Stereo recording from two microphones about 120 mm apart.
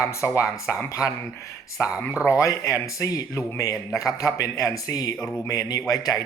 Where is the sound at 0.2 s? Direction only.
20° left (ahead or behind).